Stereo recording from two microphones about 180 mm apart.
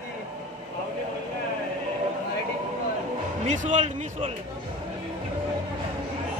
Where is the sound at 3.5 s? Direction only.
40° right (ahead or behind).